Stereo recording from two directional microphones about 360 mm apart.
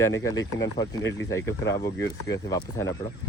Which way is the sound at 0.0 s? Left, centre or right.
Centre.